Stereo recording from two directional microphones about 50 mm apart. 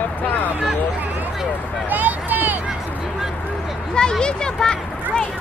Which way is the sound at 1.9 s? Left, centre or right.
Right.